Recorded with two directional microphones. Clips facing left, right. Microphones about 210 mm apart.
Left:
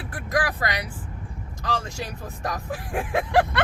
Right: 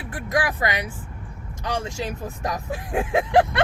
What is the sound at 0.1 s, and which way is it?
Vehicle, 20° right (ahead or behind).